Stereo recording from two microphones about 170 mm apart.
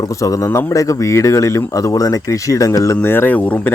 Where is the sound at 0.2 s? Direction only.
20° left (ahead or behind).